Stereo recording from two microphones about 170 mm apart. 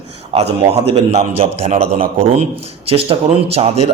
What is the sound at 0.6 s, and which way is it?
A man's voice, 35° right (ahead or behind).